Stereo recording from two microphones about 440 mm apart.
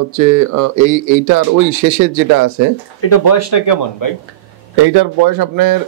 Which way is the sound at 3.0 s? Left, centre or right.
Left.